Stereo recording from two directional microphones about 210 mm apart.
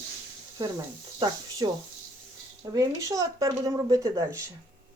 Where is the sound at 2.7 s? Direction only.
15° right (ahead or behind).